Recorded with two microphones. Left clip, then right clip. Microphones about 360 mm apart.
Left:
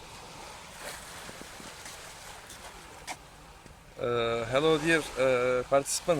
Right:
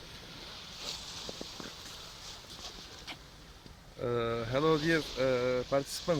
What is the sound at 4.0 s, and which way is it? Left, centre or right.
Speech, left.